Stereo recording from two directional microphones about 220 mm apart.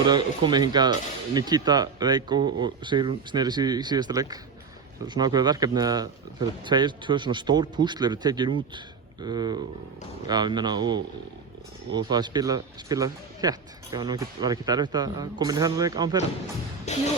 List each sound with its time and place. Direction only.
0.0 s speech: 20° right (ahead or behind)
16.8 s music: 30° left (ahead or behind)